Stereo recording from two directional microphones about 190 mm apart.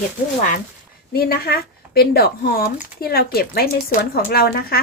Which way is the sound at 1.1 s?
55° left (ahead or behind).